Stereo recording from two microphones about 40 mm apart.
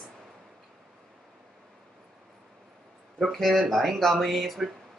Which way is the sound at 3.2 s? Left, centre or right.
Centre.